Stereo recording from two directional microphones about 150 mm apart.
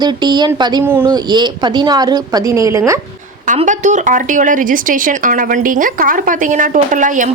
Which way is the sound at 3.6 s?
55° right (ahead or behind).